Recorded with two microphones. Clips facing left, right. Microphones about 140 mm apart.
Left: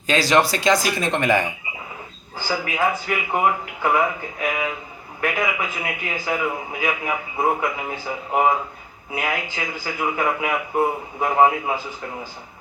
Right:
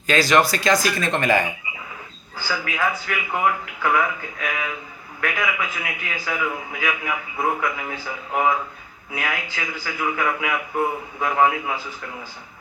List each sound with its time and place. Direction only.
0.1 s a man's voice: 30° left (ahead or behind)
2.6 s a man's voice: 20° left (ahead or behind)